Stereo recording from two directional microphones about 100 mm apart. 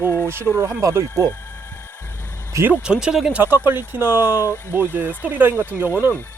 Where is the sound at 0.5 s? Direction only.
30° right (ahead or behind).